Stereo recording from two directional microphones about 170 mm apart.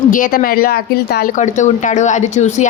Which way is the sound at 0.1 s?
55° left (ahead or behind).